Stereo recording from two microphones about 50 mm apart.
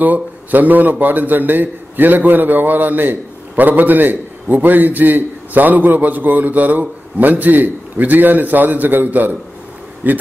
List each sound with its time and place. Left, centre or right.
0.0 s a man's voice: right